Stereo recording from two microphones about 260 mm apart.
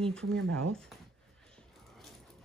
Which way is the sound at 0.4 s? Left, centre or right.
Right.